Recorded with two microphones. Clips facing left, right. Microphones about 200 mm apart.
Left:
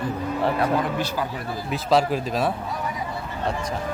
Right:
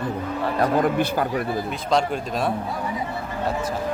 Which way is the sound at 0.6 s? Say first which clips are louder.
Right 3 dB; 55° right (ahead or behind).